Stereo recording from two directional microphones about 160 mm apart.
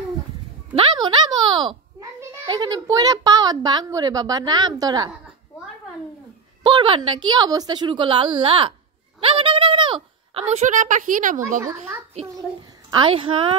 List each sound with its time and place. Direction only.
0.7 s a sound: 30° right (ahead or behind)
2.1 s a child's voice: 25° right (ahead or behind)
6.6 s a woman's voice: 30° right (ahead or behind)
10.5 s a woman's voice: 50° right (ahead or behind)
12.9 s a woman's voice: 30° right (ahead or behind)